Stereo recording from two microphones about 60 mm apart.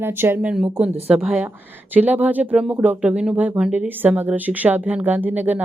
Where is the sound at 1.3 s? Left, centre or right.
Right.